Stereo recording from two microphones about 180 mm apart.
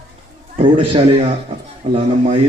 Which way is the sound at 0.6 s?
30° right (ahead or behind).